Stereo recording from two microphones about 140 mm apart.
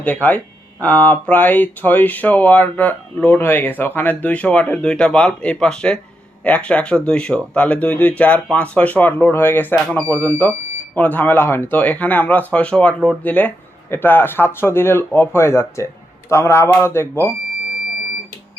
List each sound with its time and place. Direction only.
0.0 s speech: 10° left (ahead or behind)